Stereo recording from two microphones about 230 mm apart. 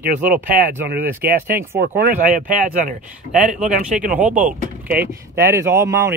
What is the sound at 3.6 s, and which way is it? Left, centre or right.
Speech, centre.